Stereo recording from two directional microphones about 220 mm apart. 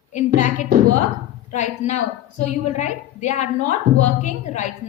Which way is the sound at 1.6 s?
30° left (ahead or behind).